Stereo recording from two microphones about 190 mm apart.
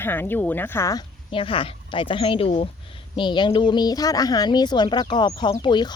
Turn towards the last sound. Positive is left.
turn(degrees=25)  # may be behind; listen again after turning